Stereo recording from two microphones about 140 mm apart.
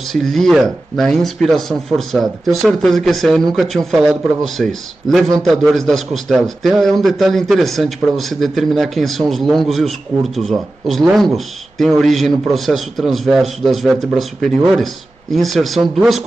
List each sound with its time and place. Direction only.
0.1 s a man's voice: centre (ahead or behind)